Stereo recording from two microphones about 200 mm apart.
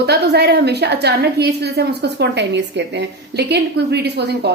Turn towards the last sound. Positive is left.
turn(degrees=-55)  # may be behind; listen again after turning